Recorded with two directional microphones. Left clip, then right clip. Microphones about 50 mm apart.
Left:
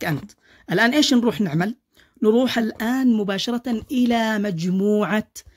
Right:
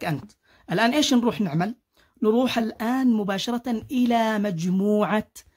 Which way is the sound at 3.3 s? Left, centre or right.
Centre.